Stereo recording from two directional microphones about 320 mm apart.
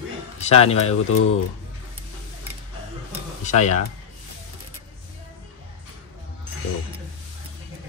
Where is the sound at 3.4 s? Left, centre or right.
Left.